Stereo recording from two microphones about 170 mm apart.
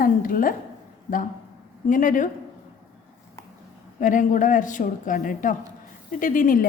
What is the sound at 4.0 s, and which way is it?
A woman's voice, 50° left (ahead or behind).